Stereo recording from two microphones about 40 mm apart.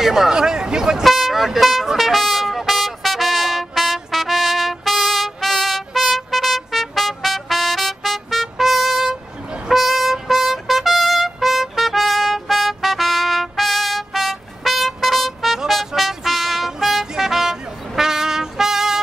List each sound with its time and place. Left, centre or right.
0.0 s speech: centre
0.3 s speech: centre
1.0 s vehicle: centre
2.0 s trumpet: centre
9.7 s vehicle: centre
10.2 s trumpet: centre
15.7 s music: centre